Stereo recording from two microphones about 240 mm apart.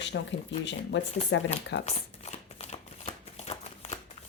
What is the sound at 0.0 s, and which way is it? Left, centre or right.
Speech, left.